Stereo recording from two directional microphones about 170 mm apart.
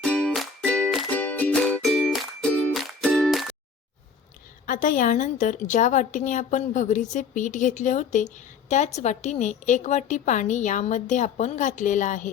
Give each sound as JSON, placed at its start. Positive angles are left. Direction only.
{"t": 0.0, "sound": "music", "side_deg": 5}
{"t": 4.6, "sound": "a woman's voice", "side_deg": 50}